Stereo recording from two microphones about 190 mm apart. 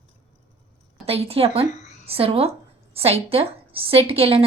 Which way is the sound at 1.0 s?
30° right (ahead or behind).